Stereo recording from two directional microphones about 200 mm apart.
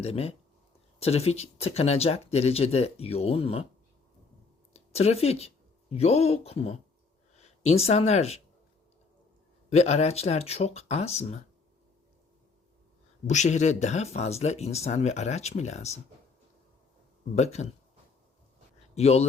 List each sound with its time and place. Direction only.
0.0 s speech: 30° left (ahead or behind)
4.7 s speech: 30° left (ahead or behind)
9.6 s speech: 35° left (ahead or behind)
13.2 s speech: 35° left (ahead or behind)
17.3 s speech: 35° left (ahead or behind)
18.9 s speech: 30° left (ahead or behind)